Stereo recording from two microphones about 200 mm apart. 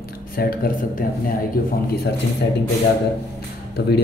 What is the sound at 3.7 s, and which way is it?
Speech, 55° left (ahead or behind).